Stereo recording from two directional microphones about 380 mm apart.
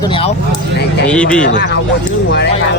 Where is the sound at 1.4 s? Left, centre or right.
Left.